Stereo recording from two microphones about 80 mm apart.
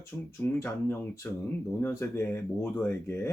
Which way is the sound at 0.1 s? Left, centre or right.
Centre.